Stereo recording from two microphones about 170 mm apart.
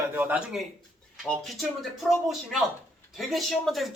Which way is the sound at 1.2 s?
5° left (ahead or behind).